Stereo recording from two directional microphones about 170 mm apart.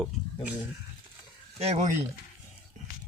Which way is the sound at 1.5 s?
40° right (ahead or behind).